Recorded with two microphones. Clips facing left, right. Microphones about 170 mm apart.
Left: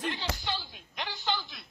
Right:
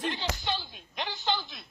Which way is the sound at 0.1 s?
20° right (ahead or behind).